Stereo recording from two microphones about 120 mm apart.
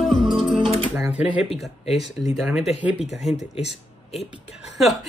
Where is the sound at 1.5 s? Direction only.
60° left (ahead or behind).